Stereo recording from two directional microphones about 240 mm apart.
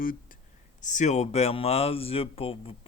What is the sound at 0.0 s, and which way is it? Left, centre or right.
Speech, left.